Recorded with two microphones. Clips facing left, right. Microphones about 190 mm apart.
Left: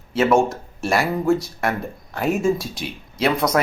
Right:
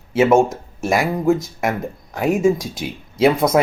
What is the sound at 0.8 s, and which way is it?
Speech, 15° right (ahead or behind).